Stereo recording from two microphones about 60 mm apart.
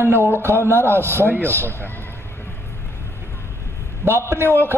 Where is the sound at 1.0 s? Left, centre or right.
Right.